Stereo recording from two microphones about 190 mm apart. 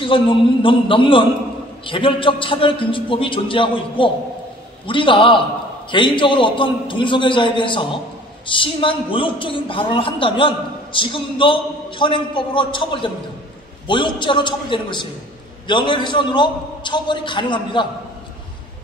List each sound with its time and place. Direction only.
0.0 s a man's voice: 25° left (ahead or behind)